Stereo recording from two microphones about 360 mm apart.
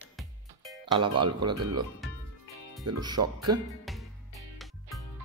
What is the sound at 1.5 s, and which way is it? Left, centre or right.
Speech, right.